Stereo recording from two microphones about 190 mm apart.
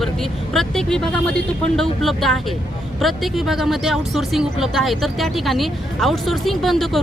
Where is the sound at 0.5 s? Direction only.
5° left (ahead or behind).